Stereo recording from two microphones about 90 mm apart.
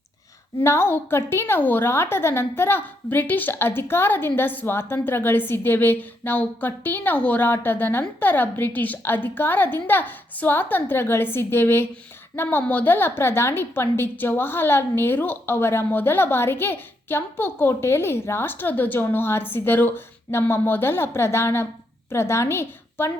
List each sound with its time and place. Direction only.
0.6 s a woman's voice: 30° left (ahead or behind)